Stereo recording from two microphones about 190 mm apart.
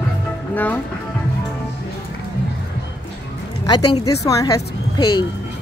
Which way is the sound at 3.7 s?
20° left (ahead or behind).